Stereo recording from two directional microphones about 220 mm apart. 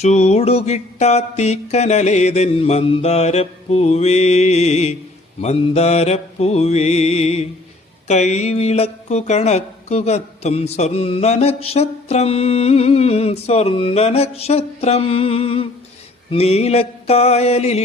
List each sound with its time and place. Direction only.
0.0 s speech: 30° left (ahead or behind)